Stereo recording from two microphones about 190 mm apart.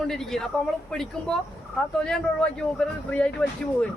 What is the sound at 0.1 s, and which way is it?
Speech, 5° left (ahead or behind).